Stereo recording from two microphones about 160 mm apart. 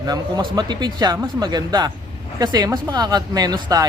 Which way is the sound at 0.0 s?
25° right (ahead or behind).